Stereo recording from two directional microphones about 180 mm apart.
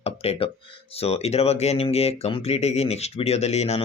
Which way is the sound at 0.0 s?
35° left (ahead or behind).